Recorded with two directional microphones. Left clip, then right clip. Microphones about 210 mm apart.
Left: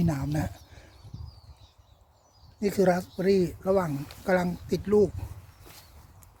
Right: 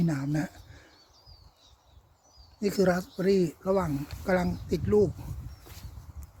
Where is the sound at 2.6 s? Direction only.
10° left (ahead or behind).